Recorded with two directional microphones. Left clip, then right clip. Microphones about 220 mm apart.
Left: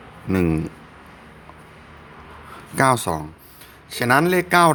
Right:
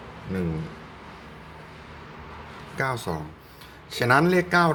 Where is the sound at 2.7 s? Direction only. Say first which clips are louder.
Left 10 dB; 40° left (ahead or behind).